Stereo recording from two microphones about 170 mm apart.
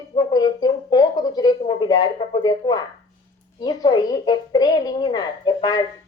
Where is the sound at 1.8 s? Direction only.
20° left (ahead or behind).